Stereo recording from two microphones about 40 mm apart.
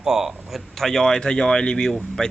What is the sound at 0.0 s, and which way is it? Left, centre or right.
Speech, centre.